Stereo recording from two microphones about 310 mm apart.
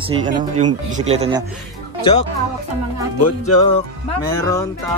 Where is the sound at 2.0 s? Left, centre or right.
Centre.